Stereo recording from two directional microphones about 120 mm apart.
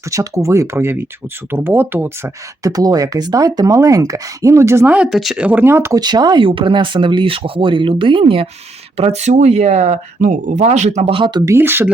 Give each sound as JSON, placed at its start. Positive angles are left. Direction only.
{"t": 0.1, "sound": "speech", "side_deg": -25}
{"t": 4.9, "sound": "speech", "side_deg": -5}
{"t": 5.5, "sound": "speech", "side_deg": -15}
{"t": 5.9, "sound": "speech", "side_deg": -35}
{"t": 9.0, "sound": "speech", "side_deg": -65}
{"t": 11.1, "sound": "speech", "side_deg": -45}
{"t": 11.4, "sound": "speech", "side_deg": -20}